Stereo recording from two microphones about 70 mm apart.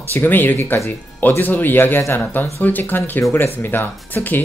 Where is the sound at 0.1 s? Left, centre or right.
Left.